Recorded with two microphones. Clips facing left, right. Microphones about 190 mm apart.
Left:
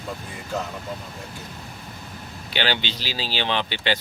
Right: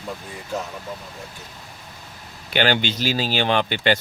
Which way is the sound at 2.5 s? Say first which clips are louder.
Right 5 dB; 50° right (ahead or behind).